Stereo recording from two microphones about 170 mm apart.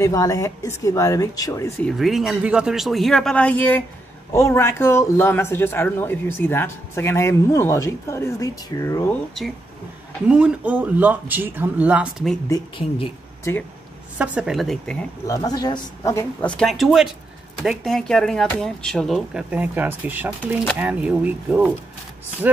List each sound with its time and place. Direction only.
0.0 s speech: 20° left (ahead or behind)
1.8 s speech: centre (ahead or behind); by 9.0 s 20° left (ahead or behind)
10.2 s speech: 5° right (ahead or behind)
12.4 s speech: 25° left (ahead or behind)
13.4 s speech: 15° left (ahead or behind)
14.1 s speech: 5° right (ahead or behind)
15.2 s speech: 20° left (ahead or behind); by 22.6 s 10° right (ahead or behind)